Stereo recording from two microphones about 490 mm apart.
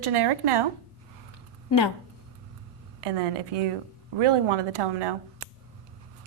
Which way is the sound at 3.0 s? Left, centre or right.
Right.